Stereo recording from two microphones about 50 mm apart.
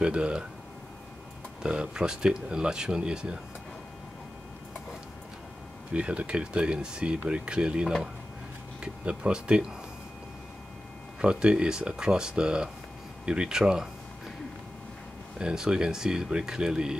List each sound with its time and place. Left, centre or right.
0.0 s speech: right
1.6 s speech: centre
5.9 s speech: right
11.1 s speech: centre
15.3 s speech: centre